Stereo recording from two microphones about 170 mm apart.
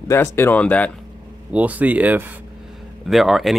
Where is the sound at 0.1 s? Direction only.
15° left (ahead or behind).